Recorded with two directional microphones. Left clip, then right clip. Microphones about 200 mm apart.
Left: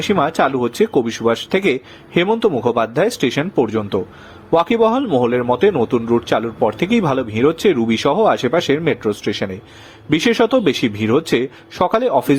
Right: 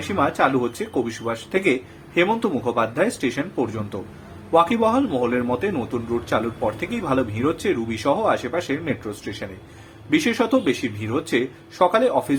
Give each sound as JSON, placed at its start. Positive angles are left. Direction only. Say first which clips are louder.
{"t": 0.1, "sound": "a man's voice", "louder": "left 3 dB", "side_deg": 45}